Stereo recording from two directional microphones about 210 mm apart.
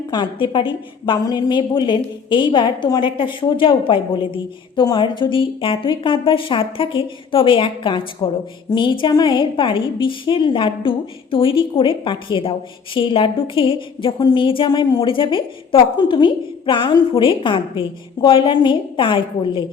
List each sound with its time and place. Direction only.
0.1 s a woman's voice: 20° left (ahead or behind)